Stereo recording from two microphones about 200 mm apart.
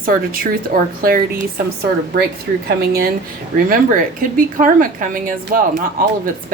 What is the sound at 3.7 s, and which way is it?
A woman's voice, 45° right (ahead or behind).